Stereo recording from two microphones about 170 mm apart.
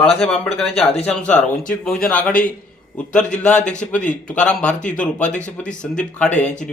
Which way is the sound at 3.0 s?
5° left (ahead or behind).